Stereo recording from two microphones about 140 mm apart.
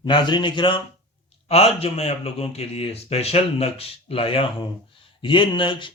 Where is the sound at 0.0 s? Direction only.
35° left (ahead or behind).